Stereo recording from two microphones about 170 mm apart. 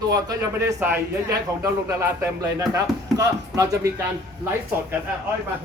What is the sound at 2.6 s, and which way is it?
A man's voice, 20° right (ahead or behind).